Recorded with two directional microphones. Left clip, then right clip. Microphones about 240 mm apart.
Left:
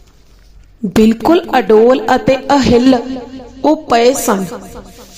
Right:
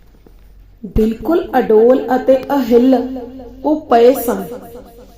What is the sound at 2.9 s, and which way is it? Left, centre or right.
Speech, left.